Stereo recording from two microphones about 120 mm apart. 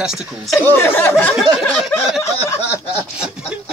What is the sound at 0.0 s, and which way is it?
Speech, 5° right (ahead or behind).